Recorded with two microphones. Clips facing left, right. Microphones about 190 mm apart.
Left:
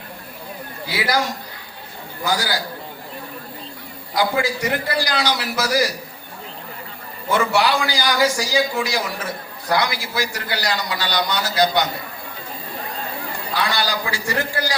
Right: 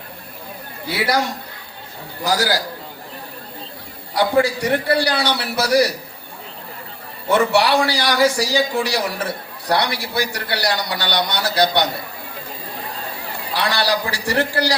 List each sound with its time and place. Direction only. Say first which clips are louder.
0.9 s a man's voice: right 2 dB; 60° right (ahead or behind)
4.2 s a man's voice: right 4 dB; 65° right (ahead or behind)
7.3 s a man's voice: right 3 dB; 65° right (ahead or behind)
13.5 s a man's voice: right 3 dB; 70° right (ahead or behind)